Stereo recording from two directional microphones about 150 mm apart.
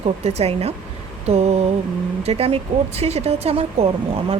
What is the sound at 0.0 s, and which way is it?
A woman's voice, 45° right (ahead or behind).